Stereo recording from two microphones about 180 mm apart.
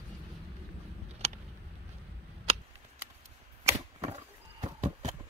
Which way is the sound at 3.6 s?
35° right (ahead or behind).